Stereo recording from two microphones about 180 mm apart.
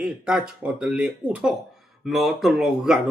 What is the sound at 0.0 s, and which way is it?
Speech, 5° right (ahead or behind).